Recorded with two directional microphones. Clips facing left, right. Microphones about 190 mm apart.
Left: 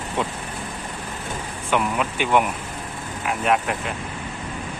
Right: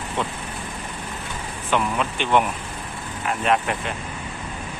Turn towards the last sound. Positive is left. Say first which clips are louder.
# even
turn(degrees=5)  # may be behind; listen again after turning